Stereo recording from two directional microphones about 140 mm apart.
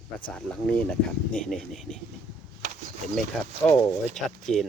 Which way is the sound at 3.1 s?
5° left (ahead or behind).